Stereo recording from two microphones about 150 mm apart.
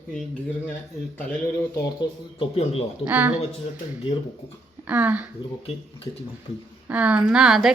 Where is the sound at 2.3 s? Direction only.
40° left (ahead or behind).